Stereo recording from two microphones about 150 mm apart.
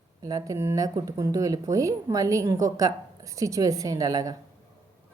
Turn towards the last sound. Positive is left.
turn(degrees=-25)  # may be behind; listen again after turning